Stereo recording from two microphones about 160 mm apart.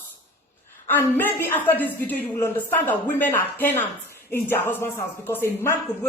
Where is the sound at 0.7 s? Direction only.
10° left (ahead or behind).